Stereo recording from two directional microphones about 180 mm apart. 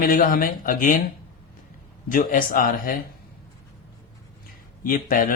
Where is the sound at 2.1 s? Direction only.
50° left (ahead or behind).